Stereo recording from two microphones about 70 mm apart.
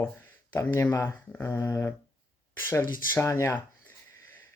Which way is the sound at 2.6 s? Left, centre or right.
Left.